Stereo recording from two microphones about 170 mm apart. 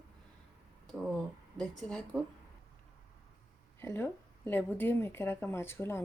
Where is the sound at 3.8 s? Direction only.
15° left (ahead or behind).